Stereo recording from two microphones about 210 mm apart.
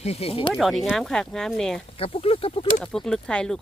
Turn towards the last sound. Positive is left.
turn(degrees=5)  # may be behind; listen again after turning